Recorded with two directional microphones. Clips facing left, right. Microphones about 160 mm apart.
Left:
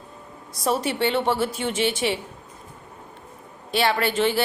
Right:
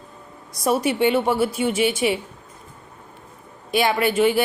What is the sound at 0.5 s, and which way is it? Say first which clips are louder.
A woman's voice: right 3 dB; 10° right (ahead or behind).